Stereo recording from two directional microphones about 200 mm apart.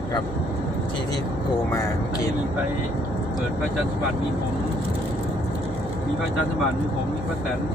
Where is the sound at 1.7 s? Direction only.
15° left (ahead or behind).